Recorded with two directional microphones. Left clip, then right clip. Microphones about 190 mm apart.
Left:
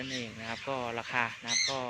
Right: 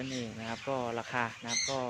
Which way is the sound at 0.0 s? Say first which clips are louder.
Left 1 dB; 15° right (ahead or behind).